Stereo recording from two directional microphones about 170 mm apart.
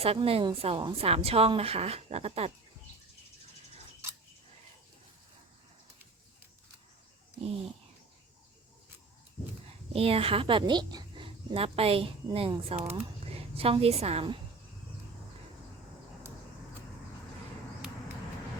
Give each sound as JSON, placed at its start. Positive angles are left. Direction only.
{"t": 0.0, "sound": "a woman's voice", "side_deg": -35}
{"t": 9.9, "sound": "a woman's voice", "side_deg": -35}